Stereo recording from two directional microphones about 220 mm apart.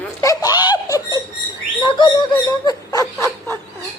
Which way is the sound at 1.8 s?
20° left (ahead or behind).